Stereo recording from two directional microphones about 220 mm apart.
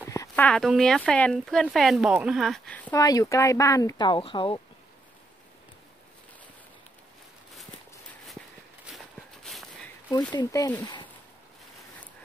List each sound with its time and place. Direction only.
0.0 s speech: 10° left (ahead or behind)
8.8 s walk: centre (ahead or behind)
10.3 s speech: 15° left (ahead or behind)